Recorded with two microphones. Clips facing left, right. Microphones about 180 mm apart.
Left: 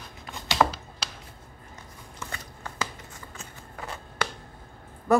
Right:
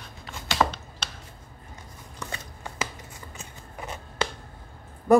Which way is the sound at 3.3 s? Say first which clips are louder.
Even; 20° right (ahead or behind).